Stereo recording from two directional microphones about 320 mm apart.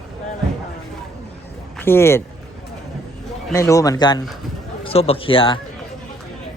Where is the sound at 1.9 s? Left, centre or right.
Centre.